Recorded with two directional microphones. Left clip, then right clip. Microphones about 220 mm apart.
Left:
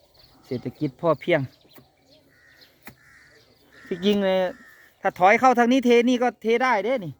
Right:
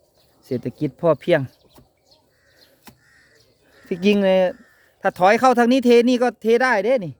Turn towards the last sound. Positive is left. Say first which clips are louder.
# right 4 dB
turn(degrees=-25)  # may be behind; listen again after turning